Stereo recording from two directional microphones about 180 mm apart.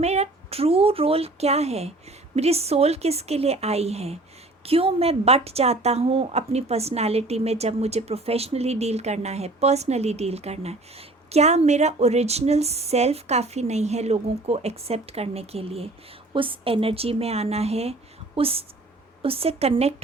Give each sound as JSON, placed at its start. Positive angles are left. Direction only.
{"t": 0.0, "sound": "a woman's voice", "side_deg": -35}